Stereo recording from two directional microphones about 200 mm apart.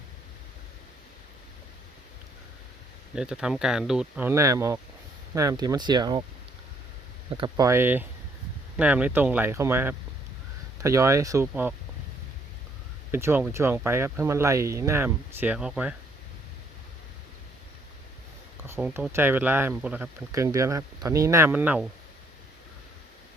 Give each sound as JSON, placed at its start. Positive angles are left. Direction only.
{"t": 3.2, "sound": "speech", "side_deg": -5}
{"t": 7.3, "sound": "speech", "side_deg": -20}
{"t": 13.1, "sound": "speech", "side_deg": -10}
{"t": 18.7, "sound": "speech", "side_deg": -10}